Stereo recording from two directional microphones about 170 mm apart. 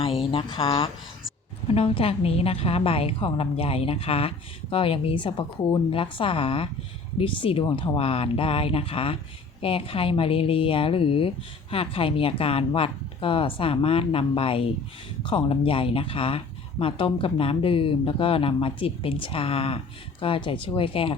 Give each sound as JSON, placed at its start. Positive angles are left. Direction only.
{"t": 0.0, "sound": "a woman's voice", "side_deg": 30}